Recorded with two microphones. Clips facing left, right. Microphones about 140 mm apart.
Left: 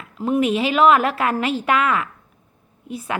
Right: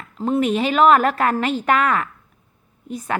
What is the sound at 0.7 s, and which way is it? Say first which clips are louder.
A woman's voice: right 1 dB; 40° right (ahead or behind).